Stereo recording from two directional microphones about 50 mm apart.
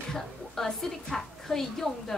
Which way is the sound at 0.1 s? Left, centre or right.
Centre.